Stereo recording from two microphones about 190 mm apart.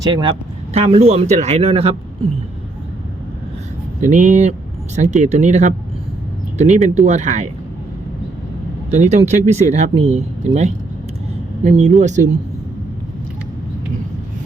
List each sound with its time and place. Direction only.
0.0 s speech: 25° right (ahead or behind)
4.0 s speech: 40° right (ahead or behind)
6.8 s speech: 35° right (ahead or behind)
9.0 s speech: 35° right (ahead or behind)